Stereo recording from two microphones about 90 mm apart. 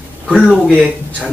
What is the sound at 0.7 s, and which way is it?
Speech, 10° right (ahead or behind).